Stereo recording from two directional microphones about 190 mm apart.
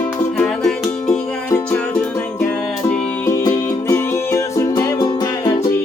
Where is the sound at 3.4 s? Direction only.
15° left (ahead or behind).